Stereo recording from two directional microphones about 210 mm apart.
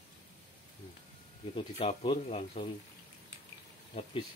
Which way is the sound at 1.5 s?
25° left (ahead or behind).